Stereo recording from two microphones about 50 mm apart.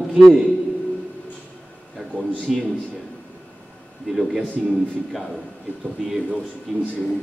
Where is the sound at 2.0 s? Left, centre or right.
Centre.